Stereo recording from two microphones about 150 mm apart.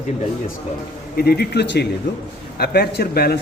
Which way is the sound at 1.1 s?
90° left.